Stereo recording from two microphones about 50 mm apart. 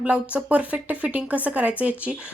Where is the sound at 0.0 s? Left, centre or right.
Right.